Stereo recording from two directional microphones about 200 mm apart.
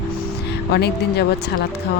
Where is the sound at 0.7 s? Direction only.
55° left (ahead or behind).